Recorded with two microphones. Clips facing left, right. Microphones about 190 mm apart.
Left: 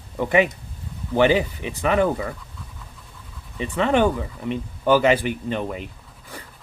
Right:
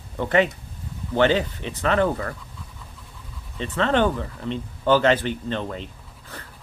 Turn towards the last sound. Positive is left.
turn(degrees=10)  # may be behind; listen again after turning